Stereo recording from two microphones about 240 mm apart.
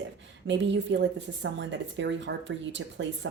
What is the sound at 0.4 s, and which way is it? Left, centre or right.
A woman's voice, right.